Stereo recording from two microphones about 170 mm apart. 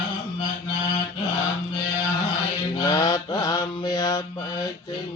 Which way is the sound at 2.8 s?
20° left (ahead or behind).